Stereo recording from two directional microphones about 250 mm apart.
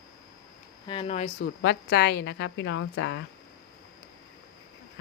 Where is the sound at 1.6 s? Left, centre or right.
Left.